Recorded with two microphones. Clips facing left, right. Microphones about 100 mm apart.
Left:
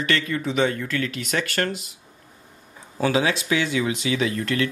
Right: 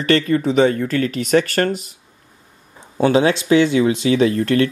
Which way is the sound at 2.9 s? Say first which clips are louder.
Right 7 dB; 30° right (ahead or behind).